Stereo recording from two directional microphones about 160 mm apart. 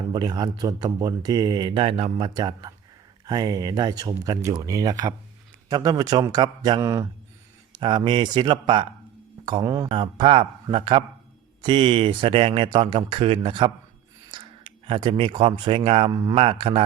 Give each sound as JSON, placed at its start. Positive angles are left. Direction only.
{"t": 0.1, "sound": "speech", "side_deg": -25}